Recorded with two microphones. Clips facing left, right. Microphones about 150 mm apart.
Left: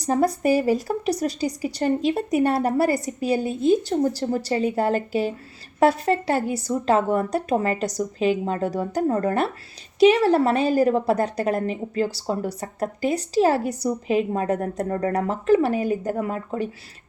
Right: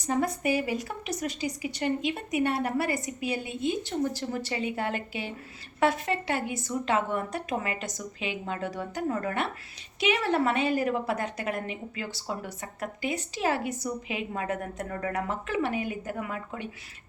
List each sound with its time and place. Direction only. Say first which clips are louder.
0.0 s a woman's voice: left 7 dB; 35° left (ahead or behind)